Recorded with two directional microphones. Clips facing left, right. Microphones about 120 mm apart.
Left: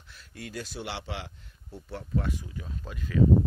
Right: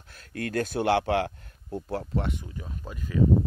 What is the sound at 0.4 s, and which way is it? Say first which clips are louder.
Speech: right 10 dB; 55° right (ahead or behind).